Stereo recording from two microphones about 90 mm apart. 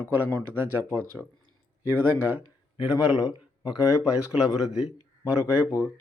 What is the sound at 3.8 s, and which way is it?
Speech, 35° left (ahead or behind).